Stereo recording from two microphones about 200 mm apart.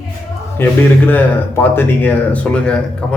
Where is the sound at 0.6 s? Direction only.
10° left (ahead or behind).